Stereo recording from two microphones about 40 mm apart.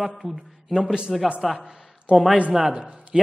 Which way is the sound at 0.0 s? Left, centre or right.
Centre.